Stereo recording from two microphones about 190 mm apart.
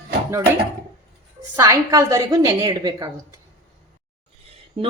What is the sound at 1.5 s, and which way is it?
A woman's voice, 15° right (ahead or behind).